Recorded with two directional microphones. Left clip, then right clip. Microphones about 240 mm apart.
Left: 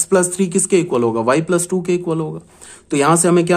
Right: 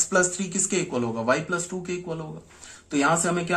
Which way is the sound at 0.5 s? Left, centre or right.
Left.